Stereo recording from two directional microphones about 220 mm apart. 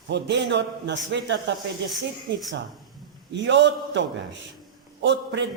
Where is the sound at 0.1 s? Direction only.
55° right (ahead or behind).